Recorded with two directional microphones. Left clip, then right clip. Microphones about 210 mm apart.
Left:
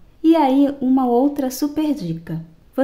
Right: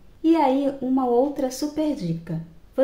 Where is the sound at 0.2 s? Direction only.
45° left (ahead or behind).